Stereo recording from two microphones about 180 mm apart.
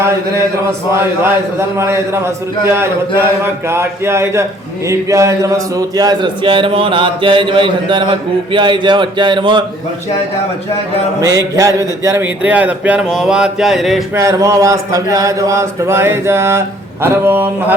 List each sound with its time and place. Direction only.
0.9 s speech: 15° right (ahead or behind)
3.7 s a man's voice: 15° right (ahead or behind)
11.2 s speech: 20° right (ahead or behind); by 14.0 s centre (ahead or behind)
14.2 s speech: 15° right (ahead or behind)